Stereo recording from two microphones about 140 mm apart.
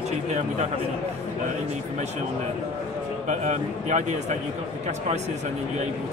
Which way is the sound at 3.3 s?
60° right (ahead or behind).